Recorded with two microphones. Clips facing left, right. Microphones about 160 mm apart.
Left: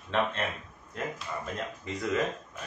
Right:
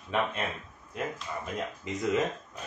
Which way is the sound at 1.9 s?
20° right (ahead or behind).